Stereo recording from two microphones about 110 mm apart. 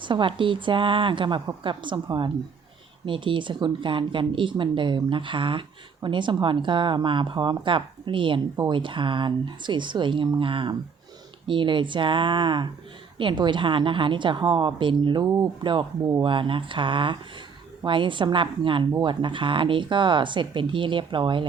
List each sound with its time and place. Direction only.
0.0 s a woman's voice: 50° right (ahead or behind)
15.2 s speech: 35° right (ahead or behind)
15.6 s a woman's voice: 45° right (ahead or behind)